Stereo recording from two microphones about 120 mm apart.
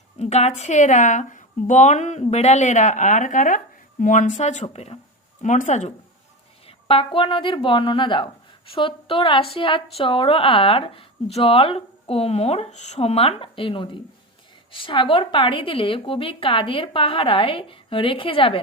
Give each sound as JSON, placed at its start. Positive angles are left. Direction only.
{"t": 0.2, "sound": "a woman's voice", "side_deg": 65}
{"t": 2.2, "sound": "a woman's voice", "side_deg": 65}
{"t": 5.4, "sound": "speech", "side_deg": 85}
{"t": 6.7, "sound": "a woman's voice", "side_deg": 50}